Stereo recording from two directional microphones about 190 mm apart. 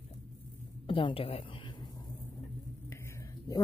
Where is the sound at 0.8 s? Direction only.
25° left (ahead or behind).